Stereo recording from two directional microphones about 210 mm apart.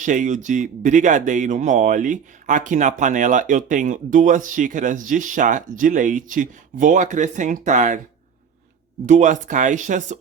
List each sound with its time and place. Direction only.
0.0 s speech: 35° right (ahead or behind)
9.0 s speech: 35° right (ahead or behind)